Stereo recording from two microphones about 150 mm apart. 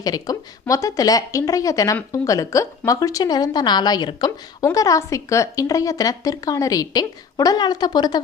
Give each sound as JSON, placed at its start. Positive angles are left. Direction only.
{"t": 0.0, "sound": "a woman's voice", "side_deg": 25}